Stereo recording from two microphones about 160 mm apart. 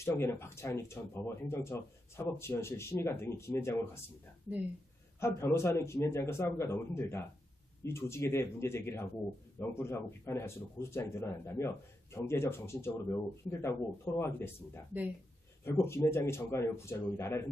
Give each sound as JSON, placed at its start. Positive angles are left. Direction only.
{"t": 0.0, "sound": "speech", "side_deg": 15}
{"t": 5.2, "sound": "speech", "side_deg": 15}